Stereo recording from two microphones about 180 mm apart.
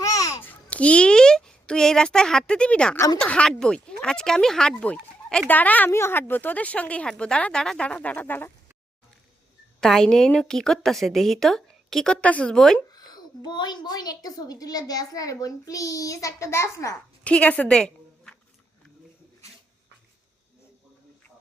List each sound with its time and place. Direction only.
0.0 s babbling: 20° left (ahead or behind)
0.4 s a woman's voice: 5° left (ahead or behind)
9.8 s a woman's voice: 5° left (ahead or behind)
12.9 s a woman's voice: 20° left (ahead or behind); by 18.3 s 5° left (ahead or behind)